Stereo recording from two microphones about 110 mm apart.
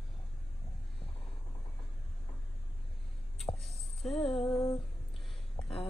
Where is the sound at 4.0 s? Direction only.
Centre (ahead or behind).